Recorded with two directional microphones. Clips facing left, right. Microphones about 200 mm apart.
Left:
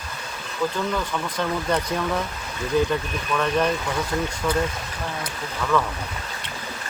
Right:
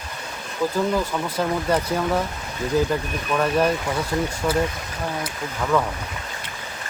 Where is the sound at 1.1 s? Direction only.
10° right (ahead or behind).